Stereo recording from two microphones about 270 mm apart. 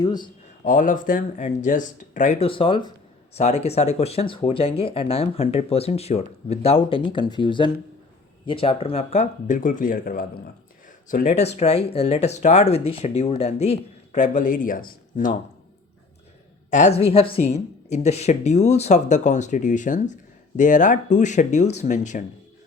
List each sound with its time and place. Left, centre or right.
0.0 s a man's voice: centre
0.6 s speech: left
16.6 s speech: left